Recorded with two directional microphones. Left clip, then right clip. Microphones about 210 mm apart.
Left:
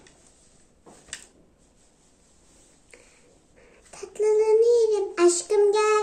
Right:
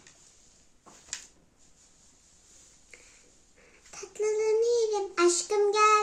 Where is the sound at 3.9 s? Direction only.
10° right (ahead or behind).